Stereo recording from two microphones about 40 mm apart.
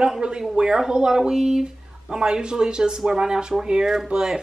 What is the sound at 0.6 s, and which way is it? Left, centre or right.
Speech, centre.